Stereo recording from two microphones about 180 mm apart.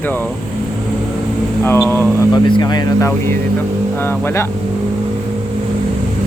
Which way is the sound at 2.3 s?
25° left (ahead or behind).